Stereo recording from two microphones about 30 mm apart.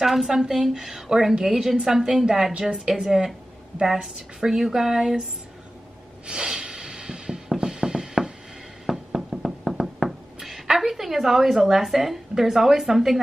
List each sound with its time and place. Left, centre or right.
0.0 s speech: centre
0.4 s a woman's voice: centre
2.7 s a woman's voice: right
6.2 s a sound: right
7.4 s music: right
8.8 s knock: centre
10.8 s a sound: centre
11.5 s speech: centre